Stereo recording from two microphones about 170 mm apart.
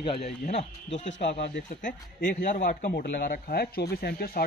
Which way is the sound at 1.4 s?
60° left (ahead or behind).